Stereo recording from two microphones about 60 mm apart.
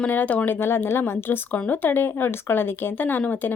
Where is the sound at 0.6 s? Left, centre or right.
Left.